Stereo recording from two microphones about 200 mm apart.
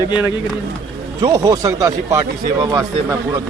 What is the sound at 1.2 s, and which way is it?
Speech, 15° right (ahead or behind).